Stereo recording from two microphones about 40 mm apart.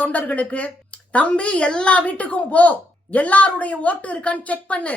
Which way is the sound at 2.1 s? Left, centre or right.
Left.